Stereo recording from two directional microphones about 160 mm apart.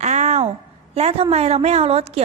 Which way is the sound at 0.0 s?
45° right (ahead or behind).